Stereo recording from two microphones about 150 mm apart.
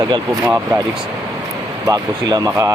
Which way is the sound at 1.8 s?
25° right (ahead or behind).